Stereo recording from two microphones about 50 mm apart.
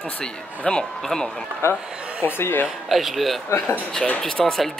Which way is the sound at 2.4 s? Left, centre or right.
Left.